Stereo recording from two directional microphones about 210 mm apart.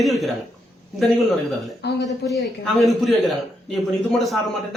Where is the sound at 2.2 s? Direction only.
50° left (ahead or behind).